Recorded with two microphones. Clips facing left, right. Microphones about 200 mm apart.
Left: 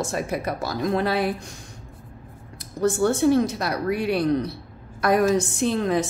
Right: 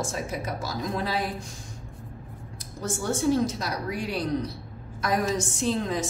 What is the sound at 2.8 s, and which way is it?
A woman's voice, 65° left (ahead or behind).